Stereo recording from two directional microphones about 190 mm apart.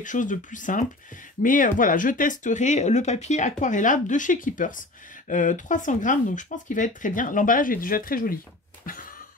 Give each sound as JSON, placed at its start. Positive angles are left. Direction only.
{"t": 0.0, "sound": "speech", "side_deg": 40}